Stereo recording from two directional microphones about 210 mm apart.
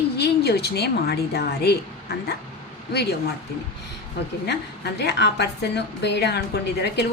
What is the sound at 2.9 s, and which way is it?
Speech, 50° left (ahead or behind).